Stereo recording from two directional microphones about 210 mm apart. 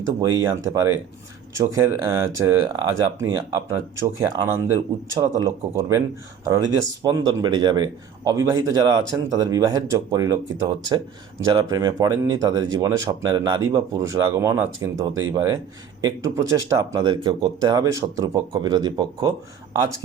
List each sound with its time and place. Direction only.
0.0 s speech: 15° right (ahead or behind)
7.0 s speech: 20° right (ahead or behind)